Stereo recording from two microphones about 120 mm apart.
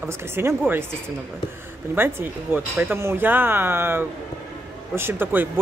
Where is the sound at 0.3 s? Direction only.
20° right (ahead or behind).